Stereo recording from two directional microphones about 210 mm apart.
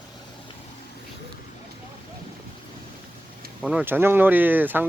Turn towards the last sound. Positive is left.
turn(degrees=-10)  # may be behind; listen again after turning